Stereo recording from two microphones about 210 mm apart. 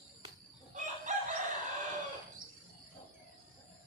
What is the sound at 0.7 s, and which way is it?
Chicken, 35° right (ahead or behind).